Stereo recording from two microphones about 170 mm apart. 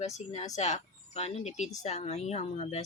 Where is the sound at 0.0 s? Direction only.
40° left (ahead or behind).